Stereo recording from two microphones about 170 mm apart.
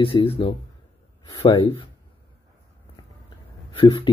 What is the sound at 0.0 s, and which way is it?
Speech, 35° left (ahead or behind).